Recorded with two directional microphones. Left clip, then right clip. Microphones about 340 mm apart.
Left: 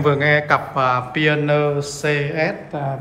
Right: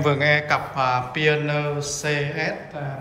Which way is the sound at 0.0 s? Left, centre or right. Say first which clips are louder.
Left 3 dB; centre.